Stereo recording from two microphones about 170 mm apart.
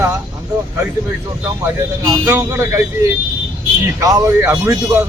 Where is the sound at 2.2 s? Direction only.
15° right (ahead or behind).